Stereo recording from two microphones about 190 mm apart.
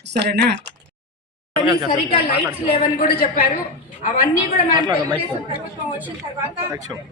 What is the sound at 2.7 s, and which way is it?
Speech, 45° left (ahead or behind).